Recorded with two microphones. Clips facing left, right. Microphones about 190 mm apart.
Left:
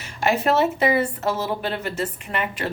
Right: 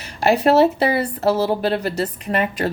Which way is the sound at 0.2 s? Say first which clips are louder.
Right 5 dB; 35° right (ahead or behind).